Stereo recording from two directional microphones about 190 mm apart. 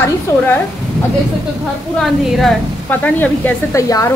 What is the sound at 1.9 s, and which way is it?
A woman's voice, centre (ahead or behind).